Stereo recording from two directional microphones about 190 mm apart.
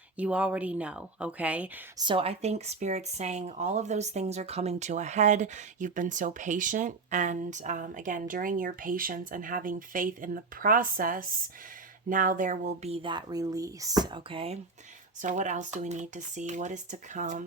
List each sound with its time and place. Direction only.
0.2 s speech: 5° right (ahead or behind)
2.0 s speech: 25° right (ahead or behind)
15.2 s speech: 40° right (ahead or behind)